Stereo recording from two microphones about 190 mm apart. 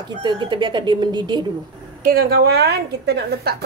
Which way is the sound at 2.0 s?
50° right (ahead or behind).